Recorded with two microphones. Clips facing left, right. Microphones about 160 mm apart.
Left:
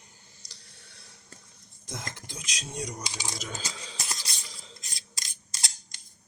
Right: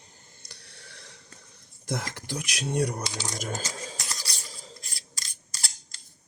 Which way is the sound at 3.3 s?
50° right (ahead or behind).